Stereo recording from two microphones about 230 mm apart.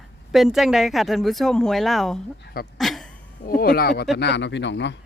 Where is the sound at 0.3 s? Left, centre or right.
Centre.